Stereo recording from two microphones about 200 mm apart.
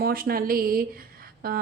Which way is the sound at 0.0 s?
50° right (ahead or behind).